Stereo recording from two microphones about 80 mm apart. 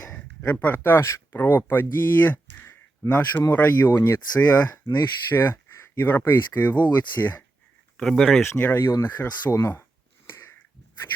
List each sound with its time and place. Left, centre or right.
0.1 s speech: left
7.9 s speech: centre
8.5 s speech: left